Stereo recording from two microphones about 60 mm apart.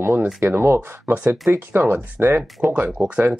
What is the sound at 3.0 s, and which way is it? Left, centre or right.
Speech, centre.